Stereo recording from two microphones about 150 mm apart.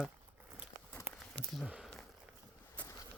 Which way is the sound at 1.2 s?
Centre (ahead or behind).